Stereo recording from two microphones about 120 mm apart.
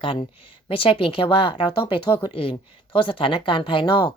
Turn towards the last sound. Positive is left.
turn(degrees=40)  # may be behind; listen again after turning